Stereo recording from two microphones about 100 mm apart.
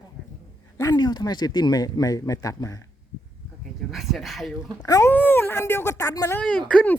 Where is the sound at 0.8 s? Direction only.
40° left (ahead or behind).